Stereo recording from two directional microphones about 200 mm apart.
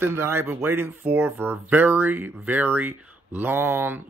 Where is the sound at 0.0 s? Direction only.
10° right (ahead or behind).